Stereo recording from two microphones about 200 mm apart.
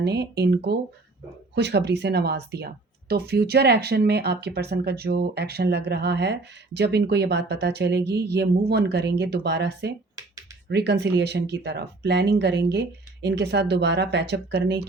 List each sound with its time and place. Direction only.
0.0 s speech: 55° right (ahead or behind)